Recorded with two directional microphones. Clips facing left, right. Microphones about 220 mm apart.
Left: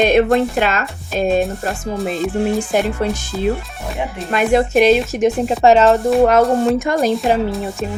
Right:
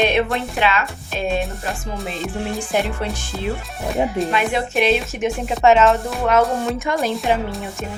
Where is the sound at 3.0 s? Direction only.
45° left (ahead or behind).